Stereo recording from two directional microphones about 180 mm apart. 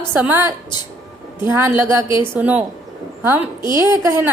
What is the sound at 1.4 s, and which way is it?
A woman's voice, 10° right (ahead or behind).